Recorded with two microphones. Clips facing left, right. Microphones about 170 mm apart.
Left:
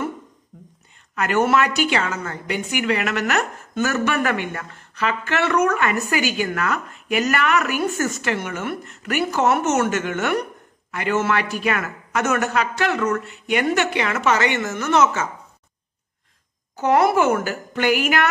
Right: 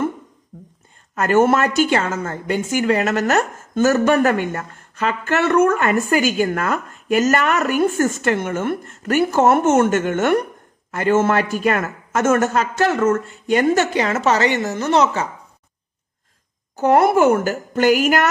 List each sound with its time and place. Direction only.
0.5 s a sound: 35° right (ahead or behind)
1.1 s a woman's voice: 45° right (ahead or behind)
16.8 s a woman's voice: 50° right (ahead or behind)